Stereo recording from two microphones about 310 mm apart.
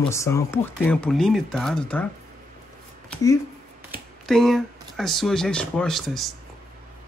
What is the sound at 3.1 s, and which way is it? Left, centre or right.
Speech, centre.